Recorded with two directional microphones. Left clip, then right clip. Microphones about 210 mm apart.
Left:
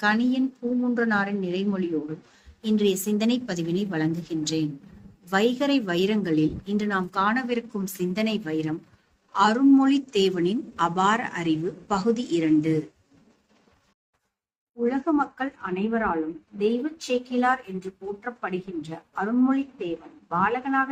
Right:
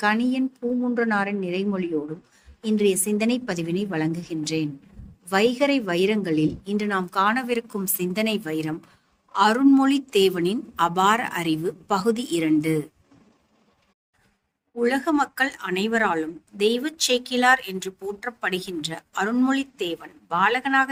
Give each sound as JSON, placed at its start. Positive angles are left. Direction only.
{"t": 0.0, "sound": "a woman's voice", "side_deg": -40}
{"t": 14.8, "sound": "speech", "side_deg": -60}